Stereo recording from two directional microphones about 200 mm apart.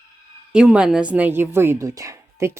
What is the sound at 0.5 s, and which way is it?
A woman's voice, 5° right (ahead or behind).